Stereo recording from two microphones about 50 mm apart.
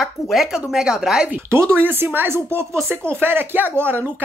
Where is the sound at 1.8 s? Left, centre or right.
Right.